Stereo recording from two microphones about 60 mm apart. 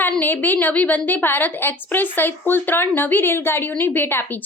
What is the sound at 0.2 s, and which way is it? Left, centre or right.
A woman's voice, left.